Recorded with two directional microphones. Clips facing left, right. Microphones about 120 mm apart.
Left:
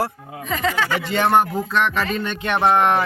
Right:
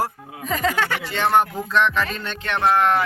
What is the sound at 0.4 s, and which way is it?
Speech, 40° right (ahead or behind).